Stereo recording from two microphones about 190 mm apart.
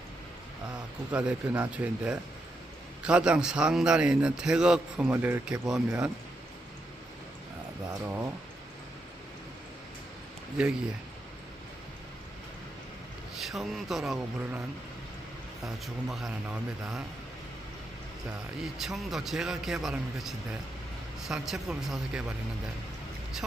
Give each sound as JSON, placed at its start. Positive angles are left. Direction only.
{"t": 1.1, "sound": "a man's voice", "side_deg": -5}
{"t": 10.6, "sound": "a man's voice", "side_deg": -5}
{"t": 13.4, "sound": "a man's voice", "side_deg": 0}
{"t": 15.6, "sound": "a man's voice", "side_deg": 0}
{"t": 18.3, "sound": "a man's voice", "side_deg": 0}